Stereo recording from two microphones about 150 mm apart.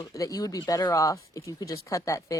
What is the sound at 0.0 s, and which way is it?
Speech, 25° left (ahead or behind).